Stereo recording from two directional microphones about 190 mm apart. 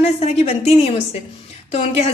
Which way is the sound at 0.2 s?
35° left (ahead or behind).